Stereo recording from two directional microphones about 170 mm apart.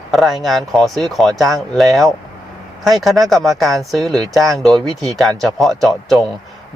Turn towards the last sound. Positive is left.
turn(degrees=0)  # may be behind; listen again after turning